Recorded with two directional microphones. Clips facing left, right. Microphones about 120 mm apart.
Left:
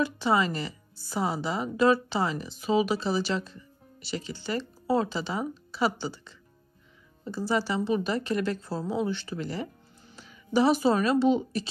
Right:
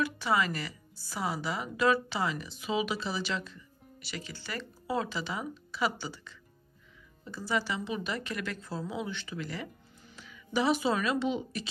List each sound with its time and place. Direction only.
0.0 s a woman's voice: 30° left (ahead or behind)